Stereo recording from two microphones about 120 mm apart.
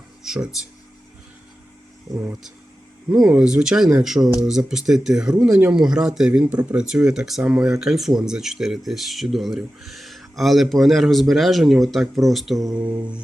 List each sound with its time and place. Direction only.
0.2 s a sound: 5° right (ahead or behind)
3.1 s speech: 5° right (ahead or behind)
12.5 s mantra: 30° right (ahead or behind)